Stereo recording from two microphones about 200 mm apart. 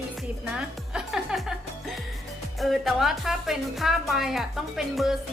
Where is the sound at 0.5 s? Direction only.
5° right (ahead or behind).